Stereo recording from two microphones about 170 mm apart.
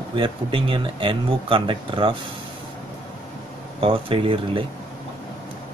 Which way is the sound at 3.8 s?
30° right (ahead or behind).